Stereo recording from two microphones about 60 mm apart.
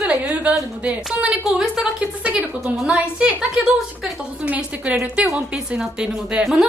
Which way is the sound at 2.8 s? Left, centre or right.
Centre.